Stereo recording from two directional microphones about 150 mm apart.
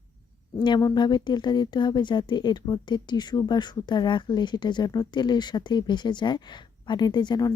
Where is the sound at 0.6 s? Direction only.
25° left (ahead or behind).